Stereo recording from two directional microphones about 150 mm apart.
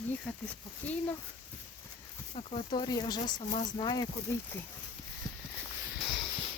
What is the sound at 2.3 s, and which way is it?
Speech, 40° left (ahead or behind).